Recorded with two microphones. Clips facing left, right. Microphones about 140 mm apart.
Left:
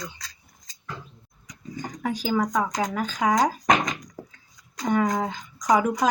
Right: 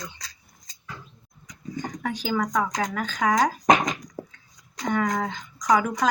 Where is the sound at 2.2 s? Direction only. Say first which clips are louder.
Left 1 dB; 15° left (ahead or behind).